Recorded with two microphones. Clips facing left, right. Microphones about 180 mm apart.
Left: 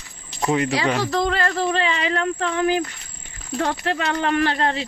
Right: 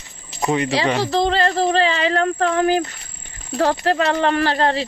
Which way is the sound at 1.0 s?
30° right (ahead or behind).